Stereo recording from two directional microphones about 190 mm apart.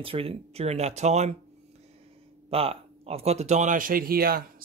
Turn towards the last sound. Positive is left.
turn(degrees=-50)  # may be behind; listen again after turning